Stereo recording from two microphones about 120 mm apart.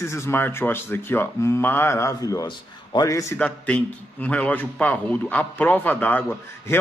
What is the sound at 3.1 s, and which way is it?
Speech, 25° left (ahead or behind).